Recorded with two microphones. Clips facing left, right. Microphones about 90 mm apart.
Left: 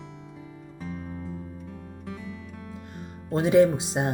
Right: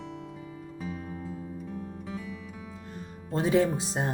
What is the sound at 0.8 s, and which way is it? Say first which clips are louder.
Music: left 2 dB; centre (ahead or behind).